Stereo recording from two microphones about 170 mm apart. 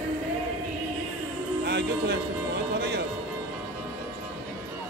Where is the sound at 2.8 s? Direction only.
75° right (ahead or behind).